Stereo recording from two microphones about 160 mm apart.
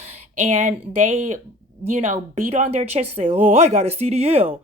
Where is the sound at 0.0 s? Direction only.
45° right (ahead or behind).